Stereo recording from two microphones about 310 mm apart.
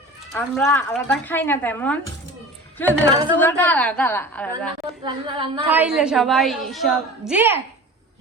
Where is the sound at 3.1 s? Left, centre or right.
Centre.